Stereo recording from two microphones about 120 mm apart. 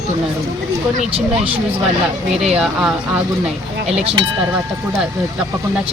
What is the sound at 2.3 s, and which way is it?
Speech, 5° right (ahead or behind).